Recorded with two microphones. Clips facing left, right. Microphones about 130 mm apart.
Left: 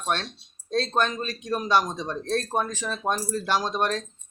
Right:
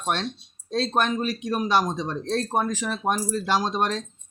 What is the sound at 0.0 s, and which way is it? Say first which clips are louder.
Speech: right 1 dB; 15° right (ahead or behind).